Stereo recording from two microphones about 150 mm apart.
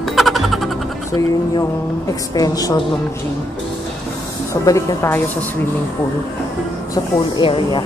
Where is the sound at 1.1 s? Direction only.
20° left (ahead or behind).